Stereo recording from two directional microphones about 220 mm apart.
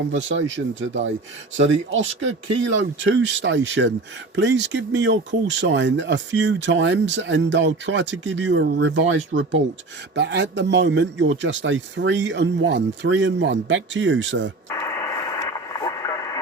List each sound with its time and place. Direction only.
0.3 s speech: 60° right (ahead or behind)
14.7 s radio: 15° left (ahead or behind)